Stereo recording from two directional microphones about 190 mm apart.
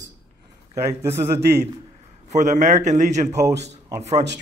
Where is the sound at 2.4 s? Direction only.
40° right (ahead or behind).